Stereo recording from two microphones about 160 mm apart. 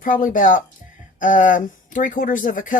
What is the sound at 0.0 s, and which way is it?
Speech, 60° left (ahead or behind).